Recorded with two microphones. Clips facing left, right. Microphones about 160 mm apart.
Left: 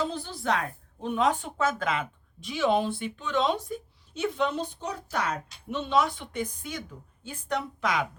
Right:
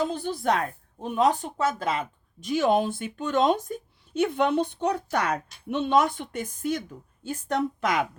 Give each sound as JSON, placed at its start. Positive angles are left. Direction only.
{"t": 0.1, "sound": "speech", "side_deg": -50}